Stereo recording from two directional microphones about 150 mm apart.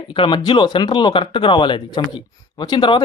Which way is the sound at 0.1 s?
35° left (ahead or behind).